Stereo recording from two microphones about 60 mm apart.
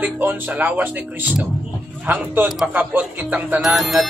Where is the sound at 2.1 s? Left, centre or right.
Right.